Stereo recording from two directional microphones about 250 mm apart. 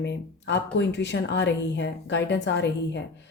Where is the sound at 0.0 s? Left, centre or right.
Left.